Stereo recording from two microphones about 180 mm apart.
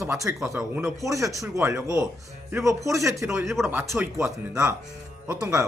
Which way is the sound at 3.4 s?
5° right (ahead or behind).